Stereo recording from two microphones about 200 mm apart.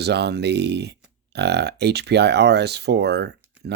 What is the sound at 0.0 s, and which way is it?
Speech, 55° right (ahead or behind).